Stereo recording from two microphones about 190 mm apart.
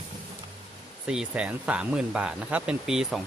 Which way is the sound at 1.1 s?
5° right (ahead or behind).